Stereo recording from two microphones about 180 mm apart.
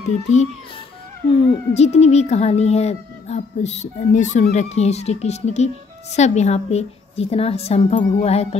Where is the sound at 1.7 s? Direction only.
35° left (ahead or behind).